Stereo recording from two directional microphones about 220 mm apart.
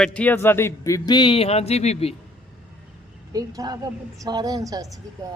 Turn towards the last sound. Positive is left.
turn(degrees=-15)  # may be behind; listen again after turning